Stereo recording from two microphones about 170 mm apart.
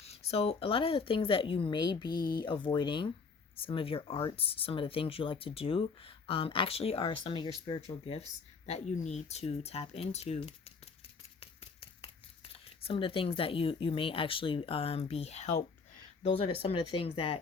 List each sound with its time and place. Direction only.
0.0 s speech: 35° left (ahead or behind)
11.3 s a sound: 30° left (ahead or behind)
12.8 s speech: 30° left (ahead or behind)